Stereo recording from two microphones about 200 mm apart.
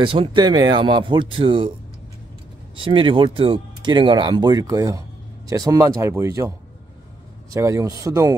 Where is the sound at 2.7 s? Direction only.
25° right (ahead or behind).